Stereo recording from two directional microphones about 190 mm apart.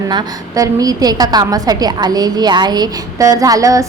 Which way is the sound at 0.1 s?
20° right (ahead or behind).